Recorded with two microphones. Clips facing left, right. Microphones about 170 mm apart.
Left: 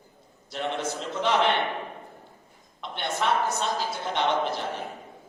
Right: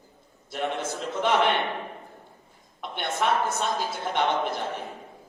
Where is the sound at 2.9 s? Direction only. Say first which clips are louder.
Right 1 dB; 50° right (ahead or behind).